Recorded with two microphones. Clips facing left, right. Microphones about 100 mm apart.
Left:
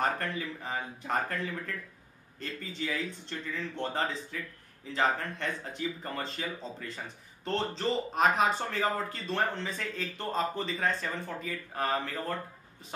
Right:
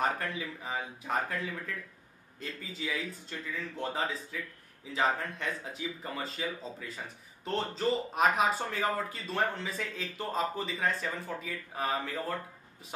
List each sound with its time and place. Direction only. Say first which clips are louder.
0.0 s speech: left 1 dB; 5° right (ahead or behind)